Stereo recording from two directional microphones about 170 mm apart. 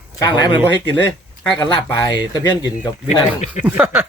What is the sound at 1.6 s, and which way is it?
Speech, 25° left (ahead or behind).